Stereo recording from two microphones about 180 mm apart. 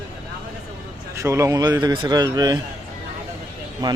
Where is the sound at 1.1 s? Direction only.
15° right (ahead or behind).